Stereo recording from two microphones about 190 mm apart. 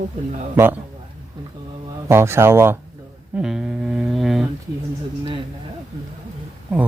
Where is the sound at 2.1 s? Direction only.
15° right (ahead or behind).